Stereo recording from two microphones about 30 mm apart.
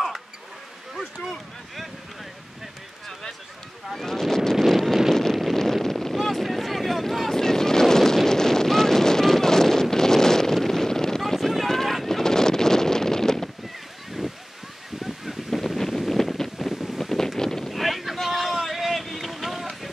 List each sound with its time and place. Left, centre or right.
4.0 s speech: centre
4.6 s wind noise: centre
5.6 s a sound: centre
7.4 s vehicle: centre
8.3 s wind noise: centre
11.3 s a sound: centre
12.2 s wind noise: centre
15.2 s a sound: centre
16.1 s wind noise: centre
16.5 s wind noise: centre
17.0 s wind noise: centre
17.4 s a sound: centre
17.6 s wind noise: centre
19.1 s boat: centre